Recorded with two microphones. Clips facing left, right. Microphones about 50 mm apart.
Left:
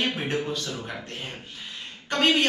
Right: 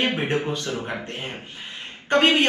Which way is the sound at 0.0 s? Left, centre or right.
Right.